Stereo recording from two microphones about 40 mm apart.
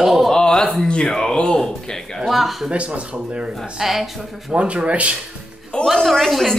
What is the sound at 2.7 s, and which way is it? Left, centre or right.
Speech, right.